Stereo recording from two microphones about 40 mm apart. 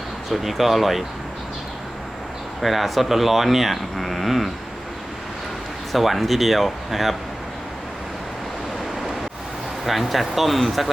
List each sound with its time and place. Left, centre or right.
0.3 s speech: centre
2.6 s speech: centre
5.9 s speech: centre
9.8 s speech: centre